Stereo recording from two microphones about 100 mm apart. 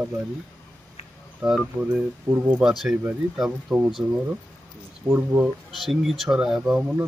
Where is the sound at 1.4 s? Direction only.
5° right (ahead or behind).